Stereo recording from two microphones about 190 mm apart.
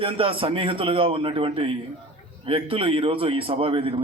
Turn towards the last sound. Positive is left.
turn(degrees=-30)  # may be behind; listen again after turning